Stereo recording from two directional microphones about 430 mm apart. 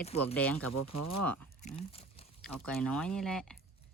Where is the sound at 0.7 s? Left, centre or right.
Left.